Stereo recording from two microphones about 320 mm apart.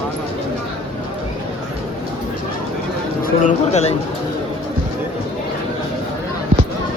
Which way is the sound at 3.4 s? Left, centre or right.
Left.